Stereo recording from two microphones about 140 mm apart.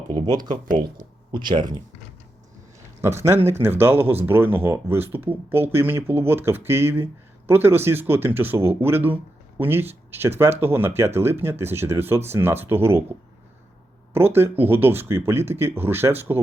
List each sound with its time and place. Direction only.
0.1 s speech: 30° right (ahead or behind)
3.0 s speech: 20° right (ahead or behind)
14.1 s speech: 15° right (ahead or behind)